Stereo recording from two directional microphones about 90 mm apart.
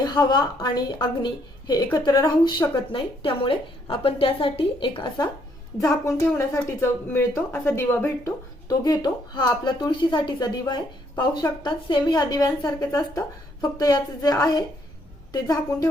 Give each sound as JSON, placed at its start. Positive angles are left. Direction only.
{"t": 0.0, "sound": "a woman's voice", "side_deg": 50}
{"t": 6.3, "sound": "a woman's voice", "side_deg": 30}
{"t": 8.6, "sound": "speech", "side_deg": 45}